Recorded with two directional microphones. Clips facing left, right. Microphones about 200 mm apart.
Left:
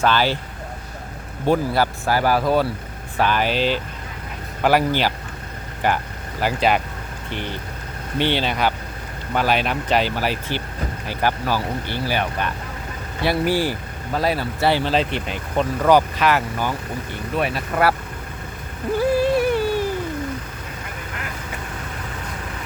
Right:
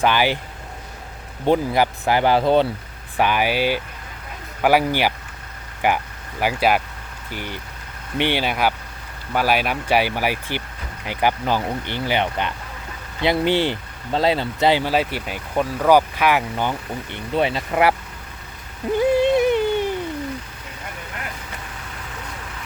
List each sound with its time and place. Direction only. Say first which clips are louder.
0.0 s speech: even; 15° right (ahead or behind)
1.5 s speech: right 1 dB; 20° right (ahead or behind)
3.2 s speech: even; 15° right (ahead or behind)
18.9 s a sound: right 2 dB; 20° right (ahead or behind)